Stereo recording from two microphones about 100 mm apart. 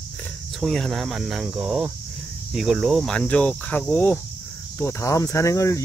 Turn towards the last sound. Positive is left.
turn(degrees=30)  # may be behind; listen again after turning